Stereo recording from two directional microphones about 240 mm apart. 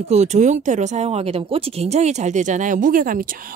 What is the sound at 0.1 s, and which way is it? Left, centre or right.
Speech, right.